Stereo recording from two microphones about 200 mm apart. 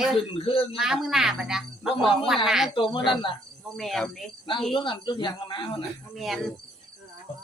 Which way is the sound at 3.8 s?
Centre (ahead or behind).